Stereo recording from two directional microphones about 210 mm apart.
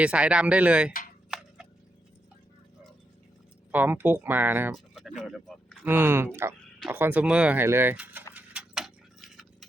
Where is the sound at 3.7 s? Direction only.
10° right (ahead or behind).